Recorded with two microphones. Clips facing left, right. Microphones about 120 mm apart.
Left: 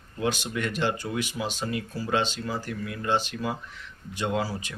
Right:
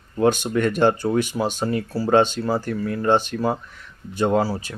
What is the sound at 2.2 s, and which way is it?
Speech, 50° right (ahead or behind).